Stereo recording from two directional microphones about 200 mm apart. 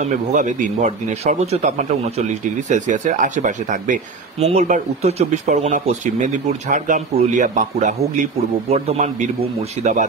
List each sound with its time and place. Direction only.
0.0 s speech: 35° right (ahead or behind)